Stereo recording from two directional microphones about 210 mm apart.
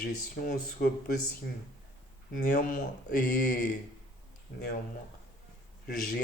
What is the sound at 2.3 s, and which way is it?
Speech, 40° left (ahead or behind).